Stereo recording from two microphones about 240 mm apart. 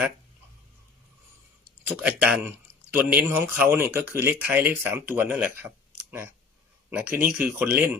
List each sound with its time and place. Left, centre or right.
1.9 s speech: centre